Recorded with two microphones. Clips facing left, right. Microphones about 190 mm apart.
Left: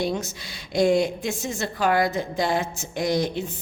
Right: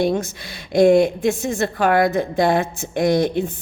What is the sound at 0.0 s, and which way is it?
A woman's voice, 55° right (ahead or behind).